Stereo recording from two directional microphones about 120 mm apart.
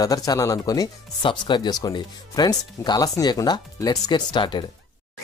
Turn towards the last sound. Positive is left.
turn(degrees=40)  # may be behind; listen again after turning